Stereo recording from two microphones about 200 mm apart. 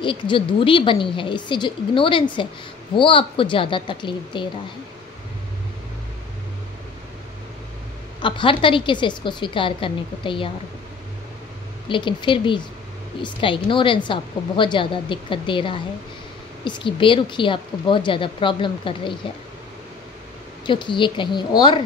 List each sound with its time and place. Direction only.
0.0 s a woman's voice: 25° left (ahead or behind)
8.2 s a woman's voice: 25° left (ahead or behind)
11.9 s a woman's voice: 25° left (ahead or behind)
20.6 s a woman's voice: 25° left (ahead or behind)